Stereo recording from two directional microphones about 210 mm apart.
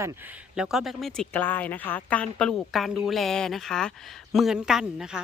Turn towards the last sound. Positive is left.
turn(degrees=-5)  # may be behind; listen again after turning